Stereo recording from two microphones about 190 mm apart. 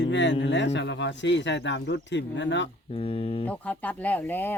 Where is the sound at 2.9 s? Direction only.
30° left (ahead or behind).